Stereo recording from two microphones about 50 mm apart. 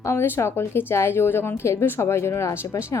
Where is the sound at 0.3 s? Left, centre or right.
Left.